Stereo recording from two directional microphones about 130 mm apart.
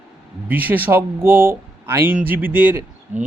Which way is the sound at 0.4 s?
15° right (ahead or behind).